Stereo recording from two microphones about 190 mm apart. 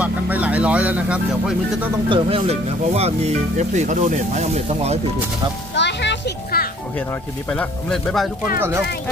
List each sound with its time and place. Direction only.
0.0 s vehicle: 5° right (ahead or behind)
2.0 s speech: 30° right (ahead or behind)
5.8 s children playing: 65° left (ahead or behind)
7.5 s speech: centre (ahead or behind)
8.5 s speech: 10° right (ahead or behind)